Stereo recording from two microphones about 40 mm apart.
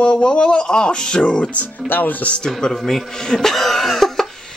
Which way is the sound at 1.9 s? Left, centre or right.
Left.